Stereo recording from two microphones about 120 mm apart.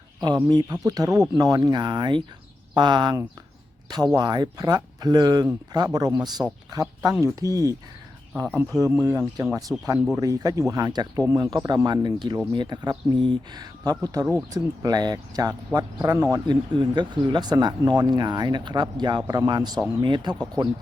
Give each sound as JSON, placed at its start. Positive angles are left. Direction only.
{"t": 0.4, "sound": "speech", "side_deg": -35}
{"t": 8.4, "sound": "speech", "side_deg": -15}
{"t": 11.3, "sound": "speech", "side_deg": -25}
{"t": 16.5, "sound": "speech", "side_deg": -40}